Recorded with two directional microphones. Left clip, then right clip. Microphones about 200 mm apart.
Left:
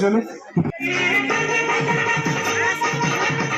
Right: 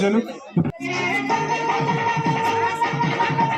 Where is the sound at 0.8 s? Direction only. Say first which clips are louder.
Left 5 dB; 90° right.